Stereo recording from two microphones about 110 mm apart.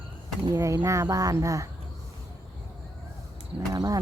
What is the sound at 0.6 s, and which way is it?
Speech, 30° right (ahead or behind).